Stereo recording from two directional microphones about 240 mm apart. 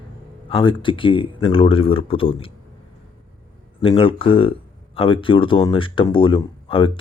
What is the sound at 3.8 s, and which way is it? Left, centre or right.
Speech, left.